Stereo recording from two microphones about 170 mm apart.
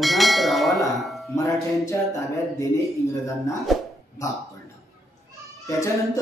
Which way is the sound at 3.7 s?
Centre (ahead or behind).